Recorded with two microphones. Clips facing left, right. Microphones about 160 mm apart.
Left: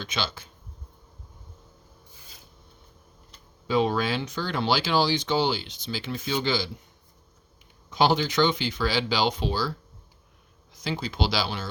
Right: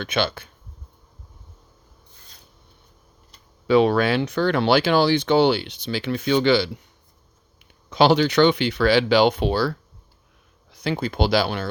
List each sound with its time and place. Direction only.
0.0 s speech: 60° right (ahead or behind)
3.7 s speech: 70° right (ahead or behind)
7.9 s speech: 75° right (ahead or behind); by 11.7 s 55° right (ahead or behind)